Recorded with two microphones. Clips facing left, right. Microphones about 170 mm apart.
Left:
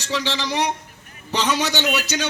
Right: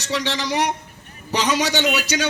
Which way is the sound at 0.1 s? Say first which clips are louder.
Right 1 dB; 15° right (ahead or behind).